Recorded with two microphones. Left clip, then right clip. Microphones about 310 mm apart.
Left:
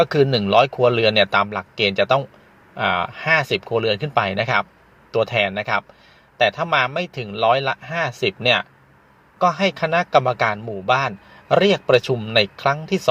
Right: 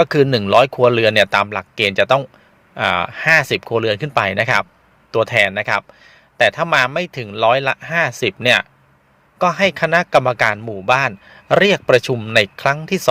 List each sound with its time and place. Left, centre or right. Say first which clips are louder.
0.0 s a man's voice: right 3 dB; right